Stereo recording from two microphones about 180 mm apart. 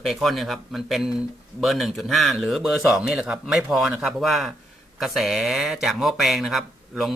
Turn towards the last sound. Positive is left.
turn(degrees=0)  # may be behind; listen again after turning